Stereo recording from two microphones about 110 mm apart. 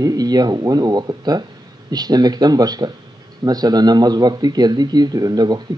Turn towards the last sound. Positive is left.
turn(degrees=-35)  # may be behind; listen again after turning